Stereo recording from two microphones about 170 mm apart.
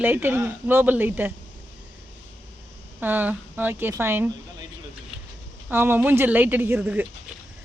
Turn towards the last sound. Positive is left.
turn(degrees=-10)  # may be behind; listen again after turning